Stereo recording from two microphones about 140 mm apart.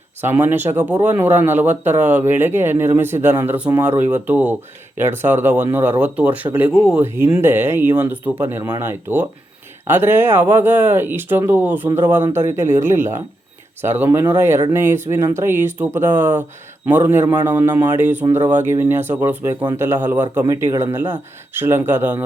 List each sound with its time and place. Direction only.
0.2 s speech: 15° right (ahead or behind)